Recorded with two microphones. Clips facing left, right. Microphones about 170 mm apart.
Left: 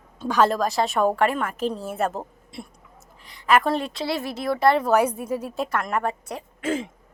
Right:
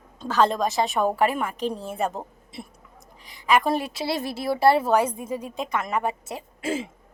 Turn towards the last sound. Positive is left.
turn(degrees=-10)  # may be behind; listen again after turning